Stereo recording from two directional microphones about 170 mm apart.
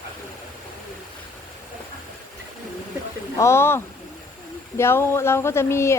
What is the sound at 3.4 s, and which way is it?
A woman's voice, 15° left (ahead or behind).